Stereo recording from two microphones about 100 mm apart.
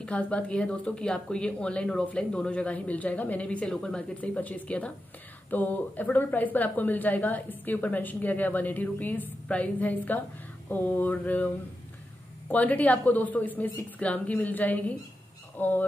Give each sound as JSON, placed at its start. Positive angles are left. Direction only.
{"t": 0.0, "sound": "a woman's voice", "side_deg": 10}
{"t": 12.4, "sound": "a woman's voice", "side_deg": 15}